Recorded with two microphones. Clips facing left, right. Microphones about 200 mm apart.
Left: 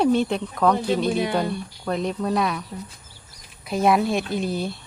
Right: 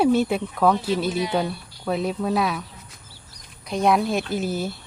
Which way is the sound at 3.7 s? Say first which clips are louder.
Left 1 dB; centre (ahead or behind).